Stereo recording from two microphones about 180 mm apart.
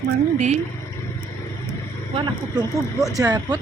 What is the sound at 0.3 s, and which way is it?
Speech, 40° right (ahead or behind).